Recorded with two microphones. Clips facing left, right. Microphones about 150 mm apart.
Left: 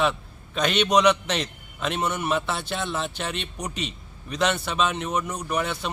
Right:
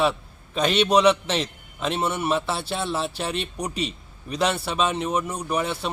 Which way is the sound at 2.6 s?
35° right (ahead or behind).